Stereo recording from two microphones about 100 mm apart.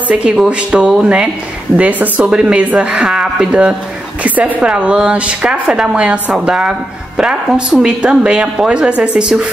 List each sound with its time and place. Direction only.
0.5 s speech: 10° right (ahead or behind)